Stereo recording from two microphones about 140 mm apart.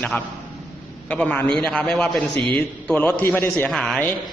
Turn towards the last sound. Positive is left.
turn(degrees=5)  # may be behind; listen again after turning